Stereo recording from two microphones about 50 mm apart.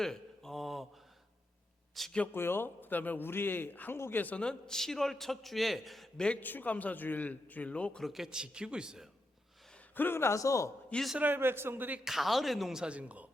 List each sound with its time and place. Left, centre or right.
0.0 s a sound: centre
2.0 s a man's voice: centre
2.3 s speech: left
3.2 s a man's voice: left
4.4 s a man's voice: centre
6.1 s a man's voice: centre
6.4 s a man's voice: left
8.0 s a man's voice: centre
9.9 s a man's voice: left
11.2 s a man's voice: right
12.0 s a man's voice: centre
12.8 s speech: right